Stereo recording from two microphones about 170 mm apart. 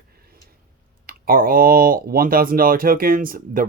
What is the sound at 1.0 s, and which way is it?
Speech, 60° right (ahead or behind).